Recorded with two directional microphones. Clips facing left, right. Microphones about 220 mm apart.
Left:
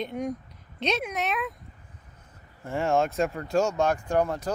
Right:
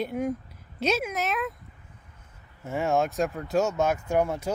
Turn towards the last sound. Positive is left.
turn(degrees=-10)  # may be behind; listen again after turning